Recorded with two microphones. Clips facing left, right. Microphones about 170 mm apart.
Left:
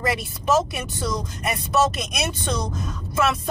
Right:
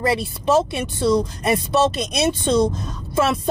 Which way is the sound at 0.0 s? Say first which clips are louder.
Right 5 dB; 30° right (ahead or behind).